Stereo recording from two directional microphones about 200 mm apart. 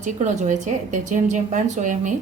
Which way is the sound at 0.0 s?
40° right (ahead or behind).